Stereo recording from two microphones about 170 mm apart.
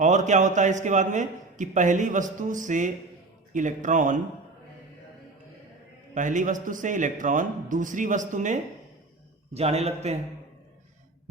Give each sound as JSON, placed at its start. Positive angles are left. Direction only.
{"t": 0.0, "sound": "a man's voice", "side_deg": -45}
{"t": 6.1, "sound": "a man's voice", "side_deg": -50}